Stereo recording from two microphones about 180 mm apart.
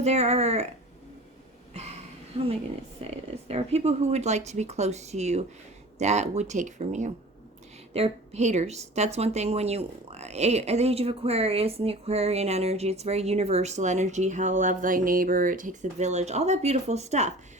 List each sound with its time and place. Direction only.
0.0 s a woman's voice: 35° right (ahead or behind)
1.7 s a sound: 35° right (ahead or behind)
2.3 s a woman's voice: 30° right (ahead or behind)